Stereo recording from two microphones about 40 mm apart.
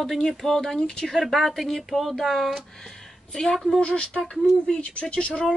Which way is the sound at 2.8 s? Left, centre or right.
Centre.